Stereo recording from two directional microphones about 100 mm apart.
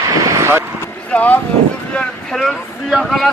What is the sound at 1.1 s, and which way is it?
Speech, 15° left (ahead or behind).